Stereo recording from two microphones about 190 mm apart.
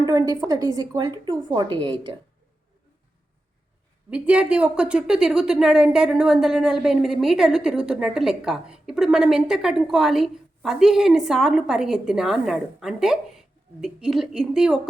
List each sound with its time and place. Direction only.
0.0 s speech: 20° right (ahead or behind)
4.1 s a woman's voice: 5° right (ahead or behind)